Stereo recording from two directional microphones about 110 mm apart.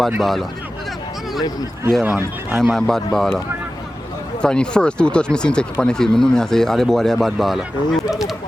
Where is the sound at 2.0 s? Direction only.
20° right (ahead or behind).